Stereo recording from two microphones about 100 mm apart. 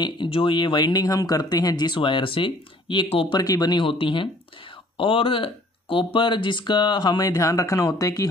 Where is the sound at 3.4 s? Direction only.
40° left (ahead or behind).